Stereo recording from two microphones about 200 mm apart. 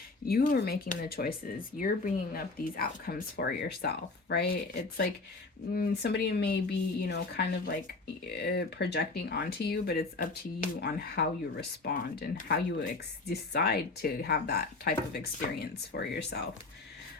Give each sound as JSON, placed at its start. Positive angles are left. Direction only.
{"t": 0.3, "sound": "speech", "side_deg": 50}